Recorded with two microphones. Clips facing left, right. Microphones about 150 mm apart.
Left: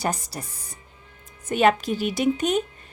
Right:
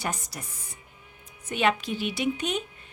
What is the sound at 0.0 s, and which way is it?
A woman's voice, 35° left (ahead or behind).